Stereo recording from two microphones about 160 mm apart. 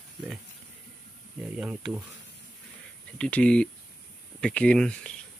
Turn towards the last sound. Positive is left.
turn(degrees=5)  # may be behind; listen again after turning